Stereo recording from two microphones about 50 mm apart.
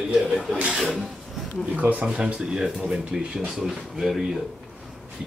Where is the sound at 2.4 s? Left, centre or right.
Centre.